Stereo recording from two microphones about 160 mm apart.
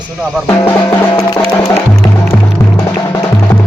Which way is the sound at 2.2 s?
20° left (ahead or behind).